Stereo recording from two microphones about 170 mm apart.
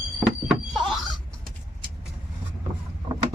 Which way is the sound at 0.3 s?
Centre (ahead or behind).